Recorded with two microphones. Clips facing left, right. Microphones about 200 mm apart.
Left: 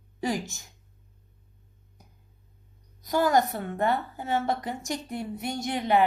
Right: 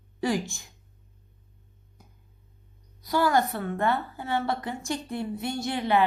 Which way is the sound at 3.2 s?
20° left (ahead or behind).